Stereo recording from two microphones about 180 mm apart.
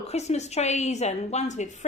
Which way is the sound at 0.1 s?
40° left (ahead or behind).